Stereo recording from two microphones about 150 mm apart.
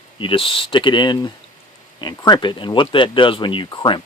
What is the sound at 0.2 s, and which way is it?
Speech, 35° left (ahead or behind).